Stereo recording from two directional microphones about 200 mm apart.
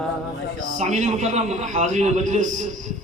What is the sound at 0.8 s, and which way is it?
A man's voice, 35° right (ahead or behind).